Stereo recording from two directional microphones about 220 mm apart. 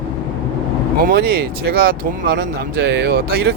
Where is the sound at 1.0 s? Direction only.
45° right (ahead or behind).